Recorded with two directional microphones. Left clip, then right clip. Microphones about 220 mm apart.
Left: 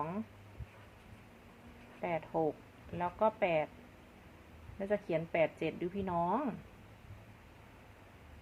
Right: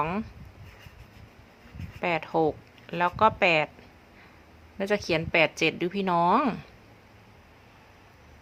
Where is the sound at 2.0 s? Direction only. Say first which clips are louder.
Right 9 dB; 40° right (ahead or behind).